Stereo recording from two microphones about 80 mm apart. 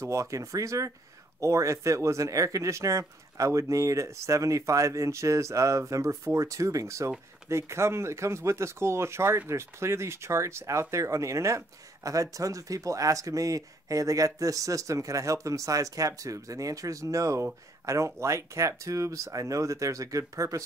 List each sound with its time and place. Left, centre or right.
0.0 s speech: right